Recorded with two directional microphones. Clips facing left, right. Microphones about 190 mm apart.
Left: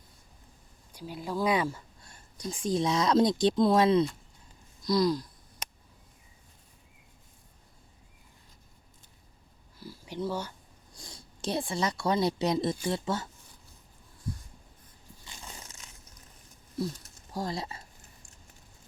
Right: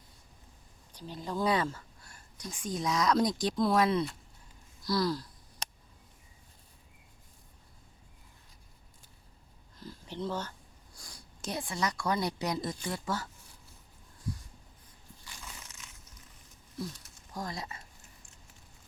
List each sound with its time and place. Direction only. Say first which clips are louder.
0.9 s speech: left 2 dB; 10° left (ahead or behind)
2.0 s speech: left 4 dB; 25° left (ahead or behind)
9.7 s a sound: left 3 dB; 10° left (ahead or behind)
10.9 s speech: left 5 dB; 25° left (ahead or behind)
15.2 s a sound: left 3 dB; 25° left (ahead or behind)
17.3 s speech: left 5 dB; 30° left (ahead or behind)